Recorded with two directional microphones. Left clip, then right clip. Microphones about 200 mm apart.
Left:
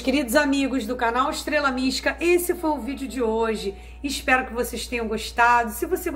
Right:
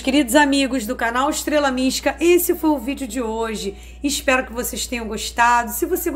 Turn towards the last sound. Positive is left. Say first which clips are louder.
# right 3 dB
turn(degrees=-30)  # may be behind; listen again after turning